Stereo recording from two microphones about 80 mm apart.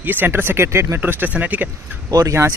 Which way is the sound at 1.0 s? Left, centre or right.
Right.